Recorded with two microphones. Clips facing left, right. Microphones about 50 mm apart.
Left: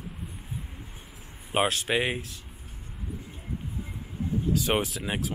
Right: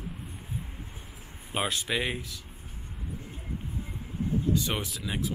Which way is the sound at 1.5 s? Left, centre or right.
Left.